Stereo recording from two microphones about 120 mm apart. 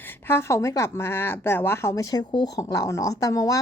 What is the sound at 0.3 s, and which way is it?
A woman's voice, 20° left (ahead or behind).